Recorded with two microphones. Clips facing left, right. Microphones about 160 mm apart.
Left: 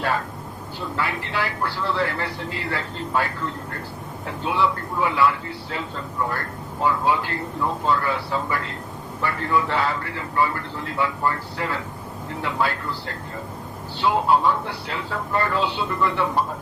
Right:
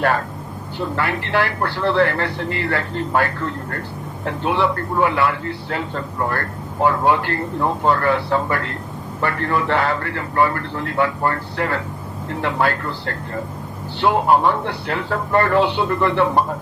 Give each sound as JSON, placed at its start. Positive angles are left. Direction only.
{"t": 0.8, "sound": "speech", "side_deg": -65}